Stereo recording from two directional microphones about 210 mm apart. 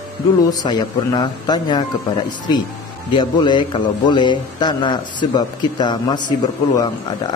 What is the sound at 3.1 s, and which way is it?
A man's voice, 20° left (ahead or behind).